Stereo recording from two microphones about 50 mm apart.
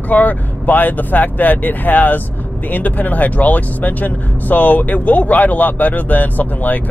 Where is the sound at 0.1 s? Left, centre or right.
Left.